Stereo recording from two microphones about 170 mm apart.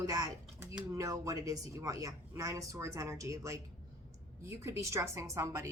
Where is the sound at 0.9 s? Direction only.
20° right (ahead or behind).